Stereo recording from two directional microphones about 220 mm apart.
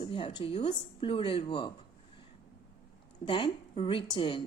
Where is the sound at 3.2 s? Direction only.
25° left (ahead or behind).